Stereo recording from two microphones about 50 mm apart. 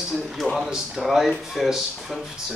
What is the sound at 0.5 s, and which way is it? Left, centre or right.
A man's voice, centre.